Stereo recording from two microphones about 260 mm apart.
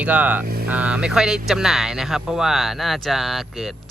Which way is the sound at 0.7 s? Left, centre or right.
Centre.